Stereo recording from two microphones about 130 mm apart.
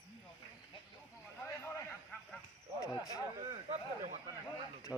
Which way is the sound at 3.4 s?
55° right (ahead or behind).